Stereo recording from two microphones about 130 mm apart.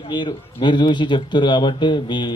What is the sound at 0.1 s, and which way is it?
Speech, 35° left (ahead or behind).